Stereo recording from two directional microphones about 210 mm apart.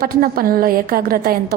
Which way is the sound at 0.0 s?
45° right (ahead or behind).